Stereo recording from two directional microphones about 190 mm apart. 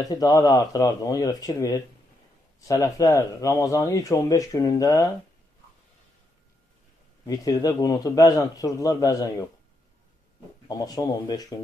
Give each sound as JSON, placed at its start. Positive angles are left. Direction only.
{"t": 0.1, "sound": "a man's voice", "side_deg": 20}
{"t": 7.2, "sound": "a man's voice", "side_deg": 20}
{"t": 10.7, "sound": "a man's voice", "side_deg": 20}